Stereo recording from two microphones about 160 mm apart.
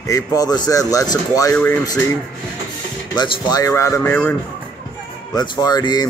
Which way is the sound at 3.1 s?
25° left (ahead or behind).